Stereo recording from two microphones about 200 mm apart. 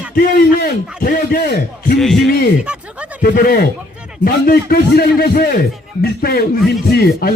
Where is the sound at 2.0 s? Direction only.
Centre (ahead or behind).